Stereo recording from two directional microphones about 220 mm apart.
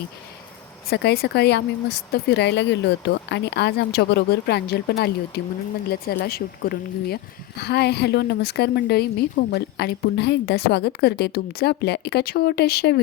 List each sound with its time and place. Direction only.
0.9 s speech: 45° left (ahead or behind)